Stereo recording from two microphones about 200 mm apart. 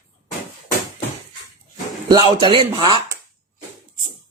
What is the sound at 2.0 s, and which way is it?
Speech, 20° right (ahead or behind).